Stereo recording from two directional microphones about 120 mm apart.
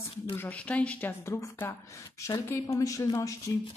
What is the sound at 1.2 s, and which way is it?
Speech, 20° left (ahead or behind).